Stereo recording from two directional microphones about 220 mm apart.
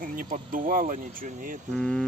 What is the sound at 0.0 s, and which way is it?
Speech, 40° right (ahead or behind).